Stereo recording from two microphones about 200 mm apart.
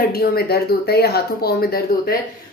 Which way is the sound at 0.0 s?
50° left (ahead or behind).